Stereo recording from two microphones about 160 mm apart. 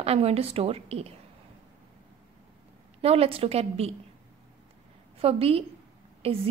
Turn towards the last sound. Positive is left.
turn(degrees=-40)  # may be behind; listen again after turning